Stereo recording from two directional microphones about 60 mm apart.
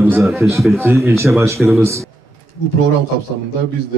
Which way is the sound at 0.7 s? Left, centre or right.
Right.